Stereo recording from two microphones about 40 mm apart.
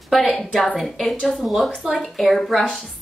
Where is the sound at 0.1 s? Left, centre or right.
Centre.